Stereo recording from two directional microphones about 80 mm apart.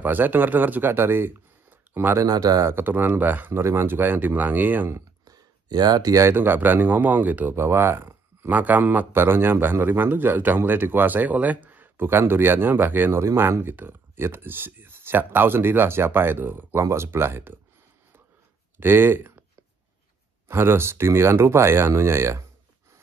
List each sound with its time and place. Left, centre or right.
0.0 s speech: right
2.1 s speech: right
2.6 s speech: right
5.2 s a sound: right
6.1 s speech: right
18.8 s speech: right
20.4 s speech: right